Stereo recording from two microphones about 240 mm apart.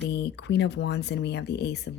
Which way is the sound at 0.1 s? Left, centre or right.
Left.